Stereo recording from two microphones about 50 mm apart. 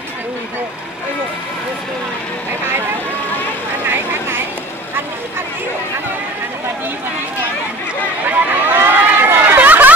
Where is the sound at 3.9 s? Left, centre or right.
Right.